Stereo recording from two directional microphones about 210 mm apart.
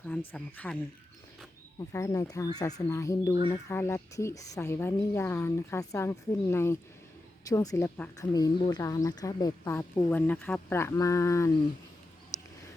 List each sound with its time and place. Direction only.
0.3 s a woman's voice: 5° left (ahead or behind)
1.9 s a woman's voice: 15° left (ahead or behind)